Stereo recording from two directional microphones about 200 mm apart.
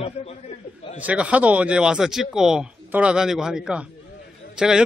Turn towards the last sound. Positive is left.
turn(degrees=-5)  # may be behind; listen again after turning